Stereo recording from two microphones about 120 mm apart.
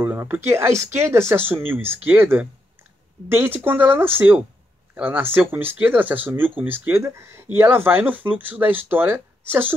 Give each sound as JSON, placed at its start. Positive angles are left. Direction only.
{"t": 0.0, "sound": "speech", "side_deg": -15}